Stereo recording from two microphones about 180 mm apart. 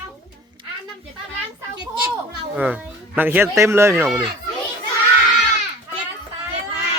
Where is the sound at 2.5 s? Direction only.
10° right (ahead or behind).